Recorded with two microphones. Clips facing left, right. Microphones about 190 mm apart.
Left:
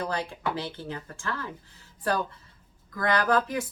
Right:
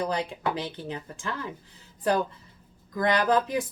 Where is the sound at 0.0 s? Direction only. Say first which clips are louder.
Right 2 dB; 15° right (ahead or behind).